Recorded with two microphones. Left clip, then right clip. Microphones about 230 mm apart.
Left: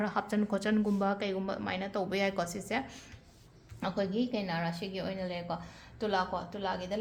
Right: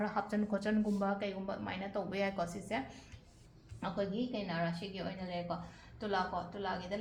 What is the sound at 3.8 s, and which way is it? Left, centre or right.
A woman's voice, left.